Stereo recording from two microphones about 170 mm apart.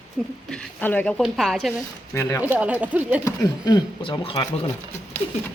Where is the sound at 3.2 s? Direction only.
25° left (ahead or behind).